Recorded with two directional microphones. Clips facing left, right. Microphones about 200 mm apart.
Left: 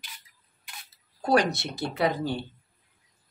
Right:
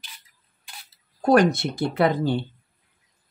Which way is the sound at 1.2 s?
50° right (ahead or behind).